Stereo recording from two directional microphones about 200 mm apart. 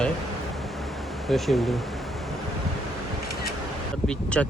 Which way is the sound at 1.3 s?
Centre (ahead or behind).